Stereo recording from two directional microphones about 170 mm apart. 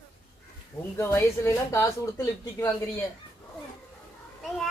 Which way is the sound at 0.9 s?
15° left (ahead or behind).